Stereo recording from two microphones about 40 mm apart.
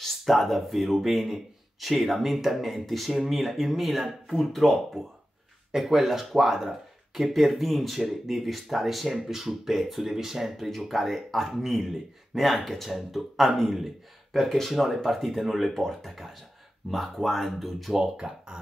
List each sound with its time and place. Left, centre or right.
0.0 s speech: centre
14.3 s speech: centre
18.1 s speech: right